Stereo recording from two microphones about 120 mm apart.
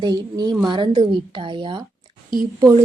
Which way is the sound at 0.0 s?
35° right (ahead or behind).